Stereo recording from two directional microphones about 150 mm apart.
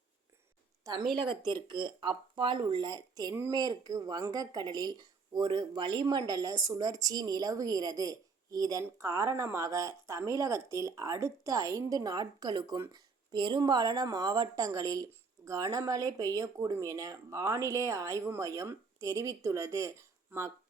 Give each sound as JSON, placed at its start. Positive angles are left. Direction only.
{"t": 0.9, "sound": "speech", "side_deg": -30}